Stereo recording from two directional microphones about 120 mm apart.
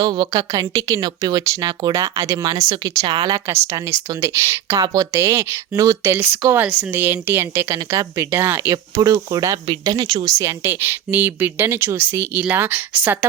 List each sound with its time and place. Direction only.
0.0 s a woman's voice: 35° right (ahead or behind)
3.4 s a woman's voice: 20° right (ahead or behind); by 10.2 s 35° right (ahead or behind)
10.2 s speech: 25° right (ahead or behind)